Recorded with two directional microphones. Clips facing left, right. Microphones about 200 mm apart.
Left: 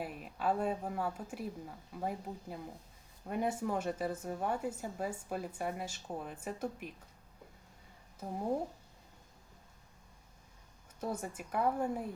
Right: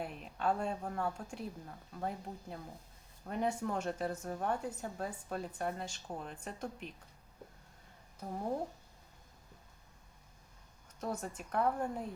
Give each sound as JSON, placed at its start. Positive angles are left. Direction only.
{"t": 0.0, "sound": "speech", "side_deg": 5}
{"t": 11.0, "sound": "speech", "side_deg": 10}